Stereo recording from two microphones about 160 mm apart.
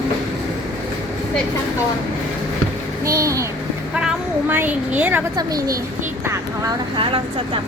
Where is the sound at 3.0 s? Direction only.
20° right (ahead or behind).